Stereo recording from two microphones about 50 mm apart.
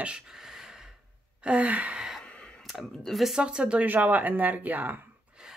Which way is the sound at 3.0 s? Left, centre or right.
Centre.